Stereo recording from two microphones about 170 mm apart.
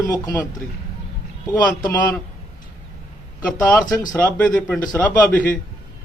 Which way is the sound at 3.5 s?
5° left (ahead or behind).